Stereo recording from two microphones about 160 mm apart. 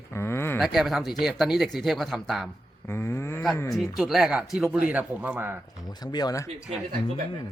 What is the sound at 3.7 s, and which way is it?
Speech, centre (ahead or behind).